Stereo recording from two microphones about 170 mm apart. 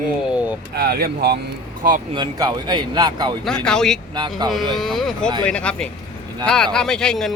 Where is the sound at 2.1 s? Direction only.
25° right (ahead or behind).